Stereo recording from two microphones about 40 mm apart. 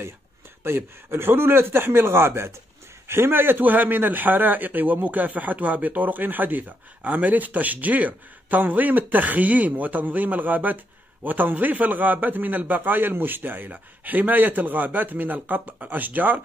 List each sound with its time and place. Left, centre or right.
0.7 s a man's voice: right
3.1 s speech: right